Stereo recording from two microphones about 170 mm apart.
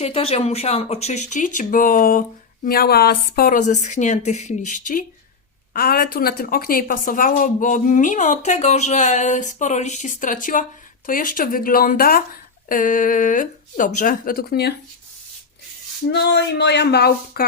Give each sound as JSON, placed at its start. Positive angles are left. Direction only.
{"t": 0.0, "sound": "a woman's voice", "side_deg": 35}
{"t": 5.7, "sound": "a woman's voice", "side_deg": 60}
{"t": 16.0, "sound": "speech", "side_deg": 80}